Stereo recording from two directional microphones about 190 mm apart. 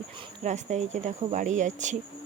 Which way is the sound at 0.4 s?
40° right (ahead or behind).